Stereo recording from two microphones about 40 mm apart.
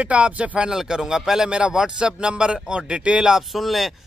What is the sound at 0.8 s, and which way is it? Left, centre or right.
Speech, centre.